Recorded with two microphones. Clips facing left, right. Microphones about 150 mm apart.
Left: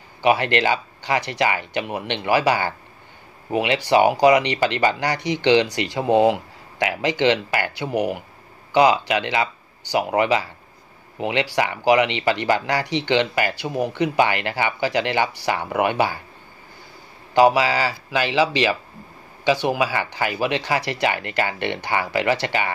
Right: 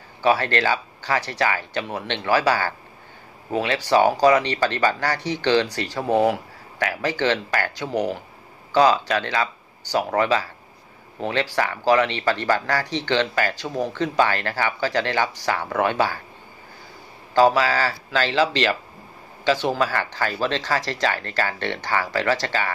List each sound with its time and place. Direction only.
0.2 s speech: 15° left (ahead or behind)
17.3 s speech: 15° left (ahead or behind)